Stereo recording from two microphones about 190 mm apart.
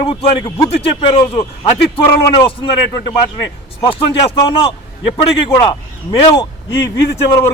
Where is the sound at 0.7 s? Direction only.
30° left (ahead or behind).